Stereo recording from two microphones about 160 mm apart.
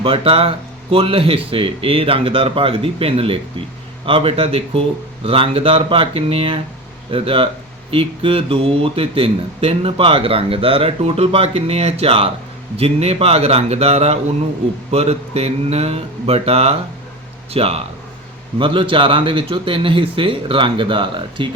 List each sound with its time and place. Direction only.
0.0 s speech: 35° right (ahead or behind)